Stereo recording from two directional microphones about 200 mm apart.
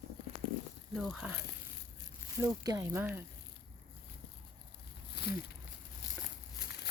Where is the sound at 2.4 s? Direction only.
15° right (ahead or behind).